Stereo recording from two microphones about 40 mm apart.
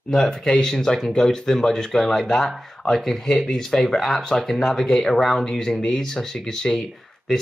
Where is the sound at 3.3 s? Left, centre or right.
Centre.